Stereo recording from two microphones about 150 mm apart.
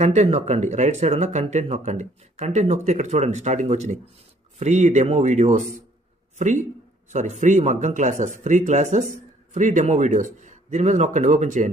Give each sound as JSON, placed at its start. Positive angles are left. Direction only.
{"t": 0.0, "sound": "a man's voice", "side_deg": -50}